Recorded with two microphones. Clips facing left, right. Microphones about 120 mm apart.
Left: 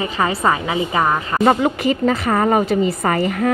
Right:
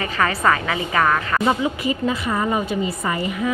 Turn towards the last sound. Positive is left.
turn(degrees=55)  # may be behind; listen again after turning